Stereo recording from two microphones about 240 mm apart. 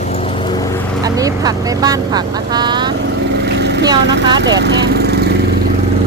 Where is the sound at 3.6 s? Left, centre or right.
Right.